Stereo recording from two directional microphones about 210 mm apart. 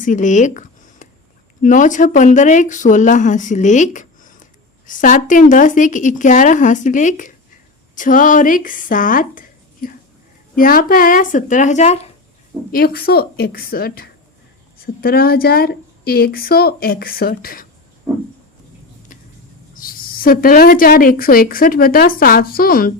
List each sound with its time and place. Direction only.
0.0 s a sound: 35° left (ahead or behind)
1.6 s speech: 40° left (ahead or behind)
12.7 s a woman's voice: 45° left (ahead or behind)
19.7 s a woman's voice: 45° left (ahead or behind)